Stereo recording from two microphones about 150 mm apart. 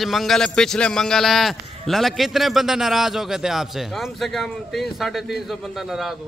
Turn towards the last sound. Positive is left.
turn(degrees=0)  # may be behind; listen again after turning